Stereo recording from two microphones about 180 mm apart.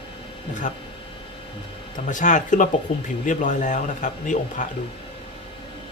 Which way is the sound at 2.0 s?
45° left (ahead or behind).